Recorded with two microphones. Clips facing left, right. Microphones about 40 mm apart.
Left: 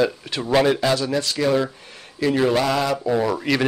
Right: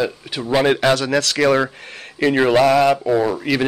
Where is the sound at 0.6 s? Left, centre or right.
Right.